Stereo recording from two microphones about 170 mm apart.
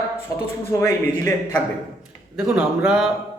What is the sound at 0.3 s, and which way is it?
Speech, 15° left (ahead or behind).